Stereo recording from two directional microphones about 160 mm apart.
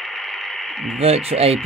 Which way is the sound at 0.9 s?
40° right (ahead or behind).